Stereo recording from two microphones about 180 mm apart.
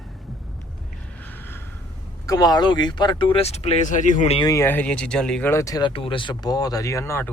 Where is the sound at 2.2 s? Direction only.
20° left (ahead or behind); by 4.4 s 40° left (ahead or behind).